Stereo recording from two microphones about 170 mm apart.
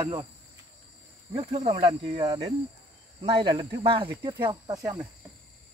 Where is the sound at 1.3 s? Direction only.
35° right (ahead or behind).